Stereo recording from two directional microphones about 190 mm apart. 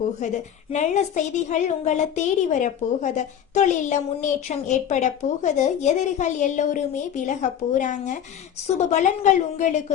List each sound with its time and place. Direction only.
0.2 s a woman's voice: 40° left (ahead or behind)